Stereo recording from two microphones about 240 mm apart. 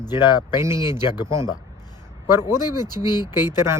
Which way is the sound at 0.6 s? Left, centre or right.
Centre.